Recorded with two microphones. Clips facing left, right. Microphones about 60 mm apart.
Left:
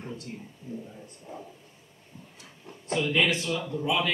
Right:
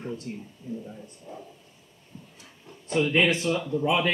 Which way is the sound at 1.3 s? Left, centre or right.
Left.